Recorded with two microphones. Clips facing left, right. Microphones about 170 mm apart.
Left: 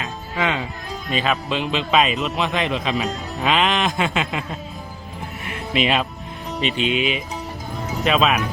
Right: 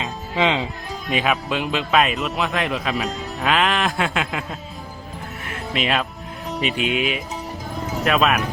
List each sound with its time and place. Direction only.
0.0 s music: 20° right (ahead or behind)
1.3 s speech: 5° right (ahead or behind)
5.5 s music: centre (ahead or behind)
6.5 s speech: centre (ahead or behind)
6.9 s speech: 50° right (ahead or behind)
7.8 s music: centre (ahead or behind)